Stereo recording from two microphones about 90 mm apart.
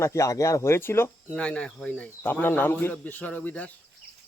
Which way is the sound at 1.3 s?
15° left (ahead or behind).